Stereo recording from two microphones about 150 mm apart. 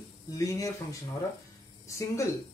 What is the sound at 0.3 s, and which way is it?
Speech, 20° left (ahead or behind).